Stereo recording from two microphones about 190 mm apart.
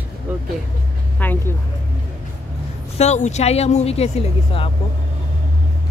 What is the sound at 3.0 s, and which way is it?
Speech, 35° left (ahead or behind).